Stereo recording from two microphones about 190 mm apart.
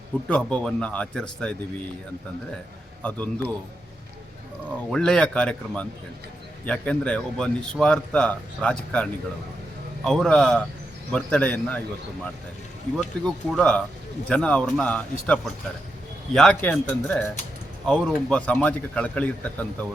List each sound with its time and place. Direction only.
0.3 s a man's voice: 5° left (ahead or behind)
3.0 s a man's voice: 5° left (ahead or behind)
4.9 s a man's voice: 5° left (ahead or behind)
13.0 s a man's voice: 5° left (ahead or behind)